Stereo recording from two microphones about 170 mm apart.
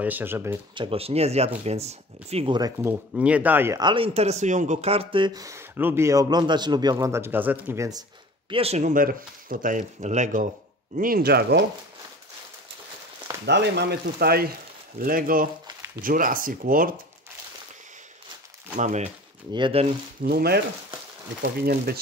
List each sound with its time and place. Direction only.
0.0 s speech: 10° right (ahead or behind)
0.7 s speech: 35° right (ahead or behind)
2.8 s speech: 10° right (ahead or behind)
3.8 s speech: 30° right (ahead or behind)
8.5 s speech: 35° right (ahead or behind)
11.0 s speech: 60° right (ahead or behind)
13.5 s speech: 85° right; by 16.9 s 55° right (ahead or behind)
18.8 s speech: 40° right (ahead or behind)
19.5 s speech: 30° right (ahead or behind)
20.2 s speech: 65° right (ahead or behind)